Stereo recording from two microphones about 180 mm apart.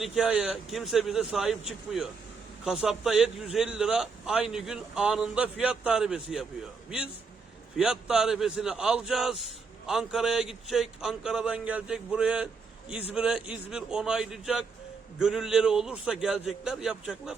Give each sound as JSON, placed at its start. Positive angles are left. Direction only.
{"t": 0.0, "sound": "a man's voice", "side_deg": -5}
{"t": 7.8, "sound": "a man's voice", "side_deg": -5}